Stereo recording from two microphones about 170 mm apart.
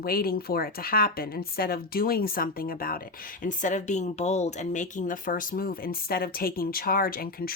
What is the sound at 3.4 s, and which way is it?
Speech, 45° left (ahead or behind).